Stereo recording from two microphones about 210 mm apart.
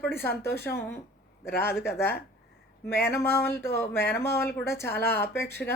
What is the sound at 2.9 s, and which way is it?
Speech, 10° left (ahead or behind).